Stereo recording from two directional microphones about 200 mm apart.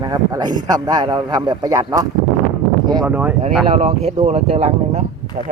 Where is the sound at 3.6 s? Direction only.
30° right (ahead or behind).